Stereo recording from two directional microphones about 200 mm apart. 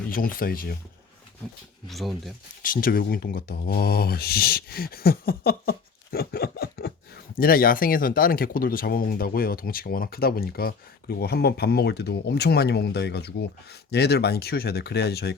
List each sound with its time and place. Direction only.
0.1 s speech: 45° left (ahead or behind)
1.9 s speech: centre (ahead or behind)
2.6 s speech: 45° left (ahead or behind)